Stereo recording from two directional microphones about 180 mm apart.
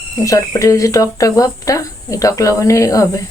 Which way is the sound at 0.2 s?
15° left (ahead or behind).